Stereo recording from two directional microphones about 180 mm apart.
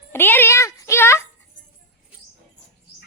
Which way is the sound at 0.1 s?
10° left (ahead or behind).